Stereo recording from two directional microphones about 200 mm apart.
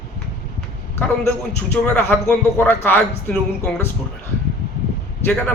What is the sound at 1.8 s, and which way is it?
A man's voice, 10° left (ahead or behind).